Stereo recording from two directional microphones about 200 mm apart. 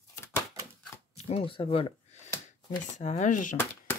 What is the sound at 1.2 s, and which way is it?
Speech, 30° left (ahead or behind).